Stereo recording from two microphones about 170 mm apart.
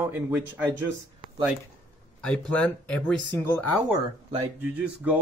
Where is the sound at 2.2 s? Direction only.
5° left (ahead or behind).